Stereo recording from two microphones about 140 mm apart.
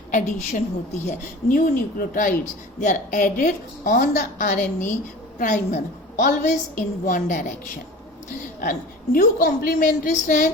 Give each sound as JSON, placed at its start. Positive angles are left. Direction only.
{"t": 0.1, "sound": "a woman's voice", "side_deg": 70}
{"t": 2.8, "sound": "a woman's voice", "side_deg": 65}
{"t": 9.1, "sound": "a woman's voice", "side_deg": 90}